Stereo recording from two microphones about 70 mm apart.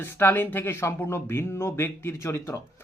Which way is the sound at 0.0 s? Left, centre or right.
Left.